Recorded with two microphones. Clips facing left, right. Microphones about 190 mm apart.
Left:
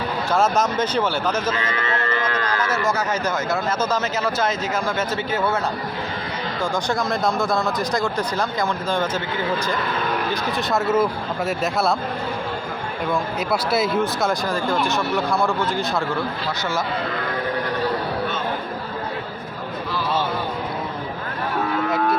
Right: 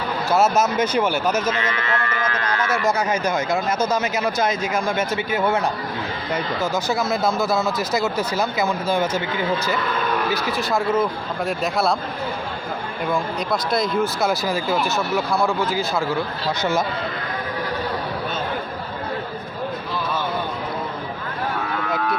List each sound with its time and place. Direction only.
0.3 s speech: 5° right (ahead or behind)
2.0 s a sound: 30° left (ahead or behind)
2.6 s speech: 10° right (ahead or behind)
6.6 s speech: 5° right (ahead or behind)
10.3 s speech: centre (ahead or behind)
13.1 s speech: 5° left (ahead or behind)